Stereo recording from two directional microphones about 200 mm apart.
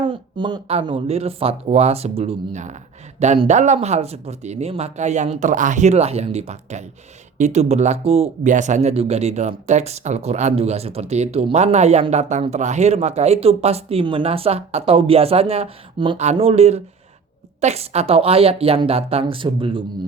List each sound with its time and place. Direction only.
0.0 s speech: 25° right (ahead or behind)